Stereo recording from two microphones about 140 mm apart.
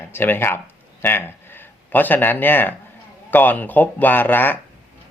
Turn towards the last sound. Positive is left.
turn(degrees=15)  # may be behind; listen again after turning